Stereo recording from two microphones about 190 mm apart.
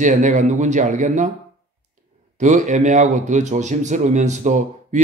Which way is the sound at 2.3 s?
40° right (ahead or behind).